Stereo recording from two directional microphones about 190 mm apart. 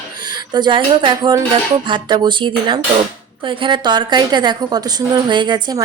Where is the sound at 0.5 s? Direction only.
25° right (ahead or behind).